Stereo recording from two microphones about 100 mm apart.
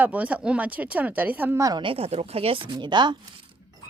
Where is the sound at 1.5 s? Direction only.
35° right (ahead or behind).